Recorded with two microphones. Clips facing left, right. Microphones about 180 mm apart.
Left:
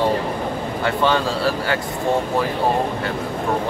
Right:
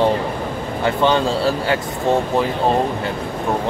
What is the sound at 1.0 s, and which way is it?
Speech, 25° right (ahead or behind).